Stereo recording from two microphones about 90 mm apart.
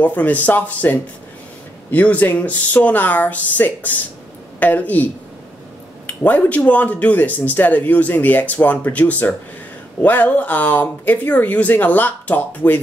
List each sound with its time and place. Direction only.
0.0 s speech: 15° left (ahead or behind)
6.0 s speech: 20° left (ahead or behind)